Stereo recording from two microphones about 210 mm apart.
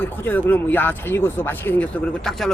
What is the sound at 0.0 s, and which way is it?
Speech, 10° left (ahead or behind).